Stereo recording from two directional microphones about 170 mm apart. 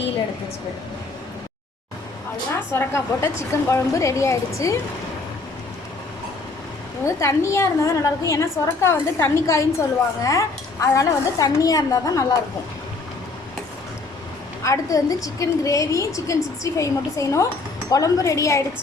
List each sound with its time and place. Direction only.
2.5 s a woman's voice: 15° left (ahead or behind)
7.0 s a woman's voice: 15° left (ahead or behind)
14.6 s a woman's voice: 20° left (ahead or behind)